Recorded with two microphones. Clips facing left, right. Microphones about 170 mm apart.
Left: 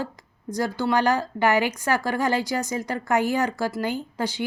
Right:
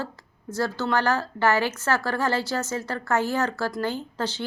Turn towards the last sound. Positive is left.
turn(degrees=10)  # may be behind; listen again after turning